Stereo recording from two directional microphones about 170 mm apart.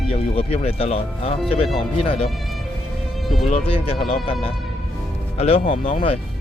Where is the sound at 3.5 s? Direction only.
35° left (ahead or behind).